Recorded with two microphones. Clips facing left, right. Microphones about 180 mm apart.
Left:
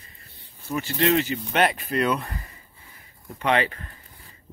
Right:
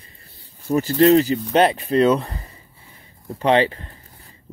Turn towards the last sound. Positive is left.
turn(degrees=-30)  # may be behind; listen again after turning